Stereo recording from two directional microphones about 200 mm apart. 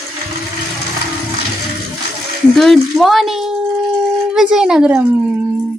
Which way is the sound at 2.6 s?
Centre (ahead or behind).